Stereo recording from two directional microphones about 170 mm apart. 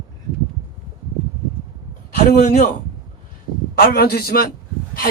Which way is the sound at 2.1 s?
60° left (ahead or behind).